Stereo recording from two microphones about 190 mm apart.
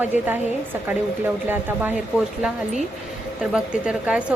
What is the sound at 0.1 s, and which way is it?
Speech, 40° left (ahead or behind).